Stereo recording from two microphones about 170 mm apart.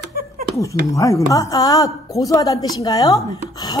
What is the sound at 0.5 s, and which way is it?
A woman's voice, 20° left (ahead or behind).